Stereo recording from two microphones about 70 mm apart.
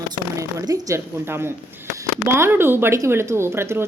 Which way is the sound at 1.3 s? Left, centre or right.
Right.